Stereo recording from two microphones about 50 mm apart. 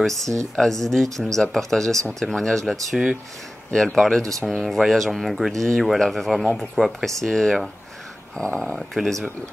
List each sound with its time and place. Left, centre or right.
0.0 s speech: centre
8.4 s speech: centre
8.7 s speech: centre